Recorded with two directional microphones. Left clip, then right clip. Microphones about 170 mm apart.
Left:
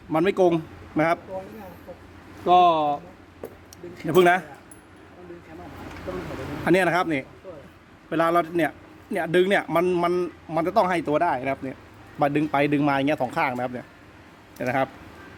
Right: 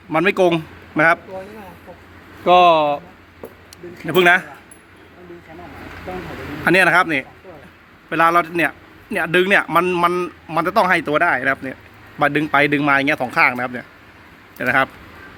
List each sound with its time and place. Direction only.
0.1 s a man's voice: 10° left (ahead or behind)
2.4 s speech: 10° right (ahead or behind)
4.0 s a man's voice: 20° left (ahead or behind)
6.7 s a man's voice: 10° left (ahead or behind)